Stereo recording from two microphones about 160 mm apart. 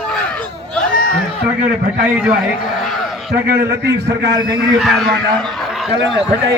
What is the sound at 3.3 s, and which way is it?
A man's voice, 75° right (ahead or behind).